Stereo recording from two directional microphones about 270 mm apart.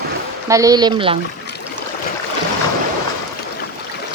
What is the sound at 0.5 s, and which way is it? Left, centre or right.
Speech, centre.